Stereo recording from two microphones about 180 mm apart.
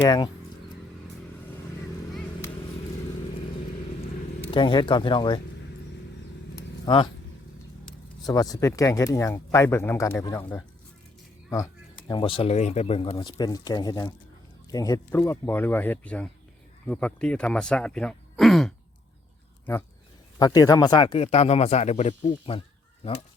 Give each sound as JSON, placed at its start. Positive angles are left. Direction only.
{"t": 0.0, "sound": "speech", "side_deg": 20}
{"t": 4.5, "sound": "speech", "side_deg": 25}
{"t": 6.8, "sound": "speech", "side_deg": 25}
{"t": 8.3, "sound": "speech", "side_deg": 20}
{"t": 20.4, "sound": "speech", "side_deg": 20}